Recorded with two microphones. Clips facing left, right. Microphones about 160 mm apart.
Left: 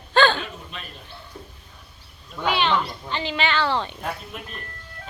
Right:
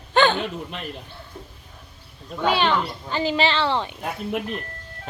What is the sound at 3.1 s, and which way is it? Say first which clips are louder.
Speech: right 5 dB; 40° right (ahead or behind).